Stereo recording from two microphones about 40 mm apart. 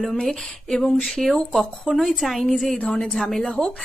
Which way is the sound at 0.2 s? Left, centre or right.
Centre.